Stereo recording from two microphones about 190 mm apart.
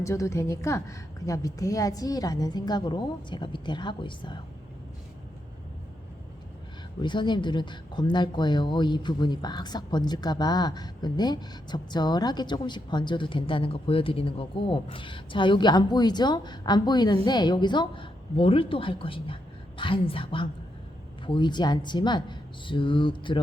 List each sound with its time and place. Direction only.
0.0 s speech: 15° left (ahead or behind)
7.0 s speech: 25° left (ahead or behind)